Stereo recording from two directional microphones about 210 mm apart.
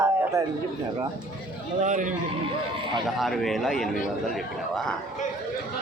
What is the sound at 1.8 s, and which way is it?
Speech, 35° right (ahead or behind).